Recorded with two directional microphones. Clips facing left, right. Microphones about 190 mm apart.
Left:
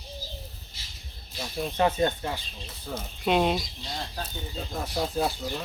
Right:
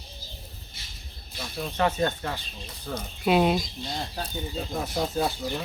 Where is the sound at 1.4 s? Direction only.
20° left (ahead or behind).